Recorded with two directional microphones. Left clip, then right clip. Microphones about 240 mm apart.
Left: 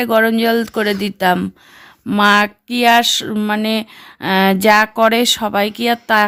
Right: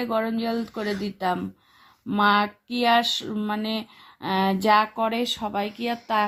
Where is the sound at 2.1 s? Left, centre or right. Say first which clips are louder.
Left 8 dB; left.